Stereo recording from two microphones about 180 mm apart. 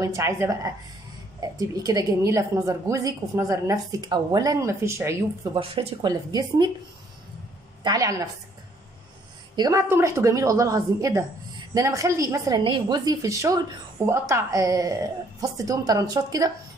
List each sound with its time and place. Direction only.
0.0 s a woman's voice: 15° right (ahead or behind)
5.5 s a woman's voice: 25° right (ahead or behind)
7.8 s a woman's voice: 20° right (ahead or behind)
9.6 s a woman's voice: 20° right (ahead or behind)